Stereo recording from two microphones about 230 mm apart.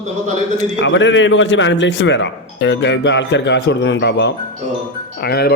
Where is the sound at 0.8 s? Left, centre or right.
Left.